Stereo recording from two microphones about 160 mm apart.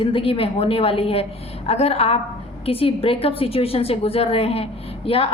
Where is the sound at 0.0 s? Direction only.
35° left (ahead or behind).